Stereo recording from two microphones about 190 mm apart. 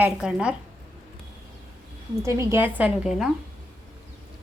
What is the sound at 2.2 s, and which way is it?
A woman's voice, 15° right (ahead or behind).